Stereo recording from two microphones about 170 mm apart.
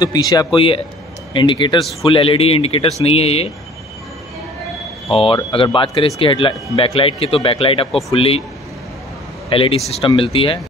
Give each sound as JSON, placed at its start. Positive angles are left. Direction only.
{"t": 0.0, "sound": "a man's voice", "side_deg": 25}
{"t": 5.1, "sound": "speech", "side_deg": 35}
{"t": 9.5, "sound": "speech", "side_deg": 30}